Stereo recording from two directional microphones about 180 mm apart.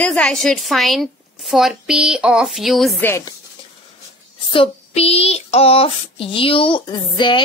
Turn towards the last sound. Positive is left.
turn(degrees=25)  # may be behind; listen again after turning